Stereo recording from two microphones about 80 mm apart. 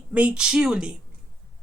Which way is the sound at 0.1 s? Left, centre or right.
Centre.